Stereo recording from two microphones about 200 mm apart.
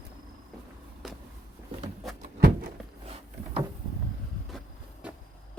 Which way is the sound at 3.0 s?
30° right (ahead or behind).